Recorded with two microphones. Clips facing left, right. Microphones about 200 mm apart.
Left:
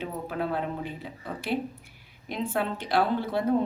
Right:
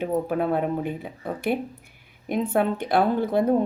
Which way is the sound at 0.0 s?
50° right (ahead or behind).